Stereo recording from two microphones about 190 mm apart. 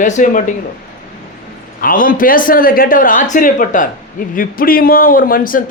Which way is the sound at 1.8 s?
45° left (ahead or behind).